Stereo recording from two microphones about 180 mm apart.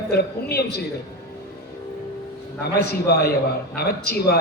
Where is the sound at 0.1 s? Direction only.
60° left (ahead or behind).